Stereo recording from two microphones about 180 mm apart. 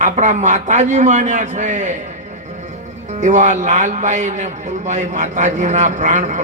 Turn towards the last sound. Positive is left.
turn(degrees=-40)  # may be behind; listen again after turning